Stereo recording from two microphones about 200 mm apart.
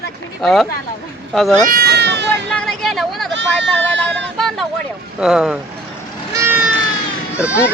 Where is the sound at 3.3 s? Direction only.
65° right (ahead or behind).